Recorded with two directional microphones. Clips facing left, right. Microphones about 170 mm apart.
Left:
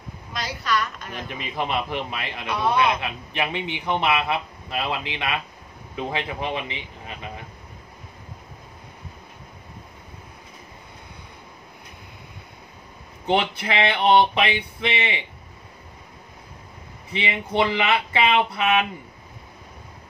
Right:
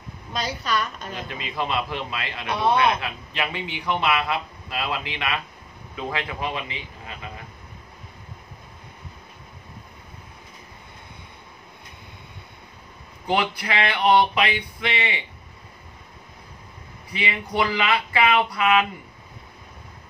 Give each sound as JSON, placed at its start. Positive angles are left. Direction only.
{"t": 0.3, "sound": "a woman's voice", "side_deg": -25}
{"t": 1.3, "sound": "a man's voice", "side_deg": 15}
{"t": 13.3, "sound": "a man's voice", "side_deg": 25}
{"t": 17.1, "sound": "a man's voice", "side_deg": 25}